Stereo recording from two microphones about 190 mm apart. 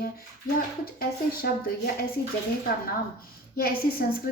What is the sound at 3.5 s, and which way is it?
Speech, 55° left (ahead or behind).